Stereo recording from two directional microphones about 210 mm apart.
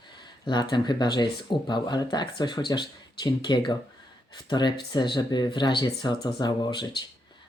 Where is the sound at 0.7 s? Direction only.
20° left (ahead or behind).